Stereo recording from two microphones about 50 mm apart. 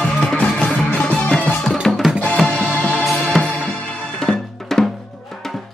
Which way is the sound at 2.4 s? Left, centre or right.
Left.